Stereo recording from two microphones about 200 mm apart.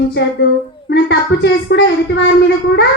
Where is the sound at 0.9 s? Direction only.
60° left (ahead or behind).